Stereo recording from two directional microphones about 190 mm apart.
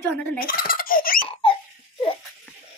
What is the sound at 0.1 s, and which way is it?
Speech, 5° left (ahead or behind).